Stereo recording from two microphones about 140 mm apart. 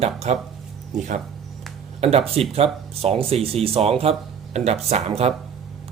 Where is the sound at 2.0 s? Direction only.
45° right (ahead or behind).